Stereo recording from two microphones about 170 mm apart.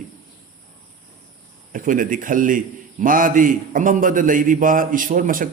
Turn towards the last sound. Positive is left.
turn(degrees=-50)  # may be behind; listen again after turning